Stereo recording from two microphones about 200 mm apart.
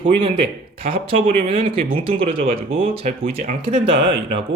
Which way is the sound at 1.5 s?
25° right (ahead or behind).